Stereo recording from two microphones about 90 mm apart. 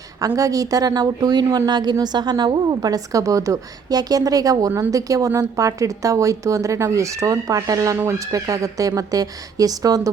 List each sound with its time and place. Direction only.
0.3 s a woman's voice: 40° right (ahead or behind)